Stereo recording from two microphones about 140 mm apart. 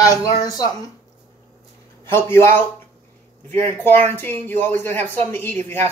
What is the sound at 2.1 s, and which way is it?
Speech, 15° left (ahead or behind).